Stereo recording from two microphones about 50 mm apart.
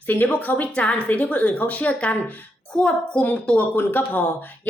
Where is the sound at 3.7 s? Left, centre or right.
Left.